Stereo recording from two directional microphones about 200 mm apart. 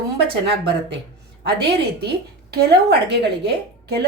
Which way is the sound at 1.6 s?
55° right (ahead or behind).